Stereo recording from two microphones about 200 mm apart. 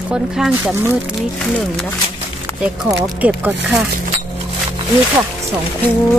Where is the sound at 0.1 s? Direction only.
5° right (ahead or behind).